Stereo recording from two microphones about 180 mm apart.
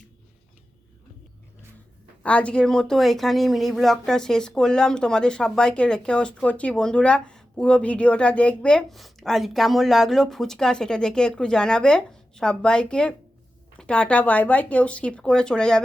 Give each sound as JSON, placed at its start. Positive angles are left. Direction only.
{"t": 2.2, "sound": "speech", "side_deg": 5}